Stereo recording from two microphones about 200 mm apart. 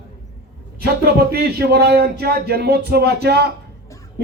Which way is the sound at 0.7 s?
50° right (ahead or behind).